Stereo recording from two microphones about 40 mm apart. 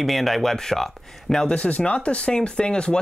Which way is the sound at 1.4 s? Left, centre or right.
Left.